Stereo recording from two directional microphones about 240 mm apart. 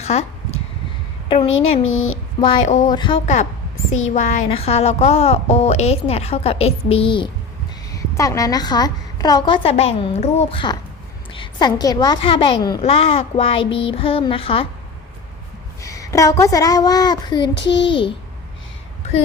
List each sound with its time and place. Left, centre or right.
0.0 s a sound: left
1.5 s a sound: left
2.4 s speech: left
2.9 s a woman's voice: centre
4.1 s a woman's voice: left
15.8 s a woman's voice: centre
17.5 s a child's voice: left
17.8 s a woman's voice: left